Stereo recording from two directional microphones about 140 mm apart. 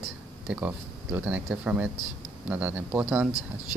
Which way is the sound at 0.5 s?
10° right (ahead or behind).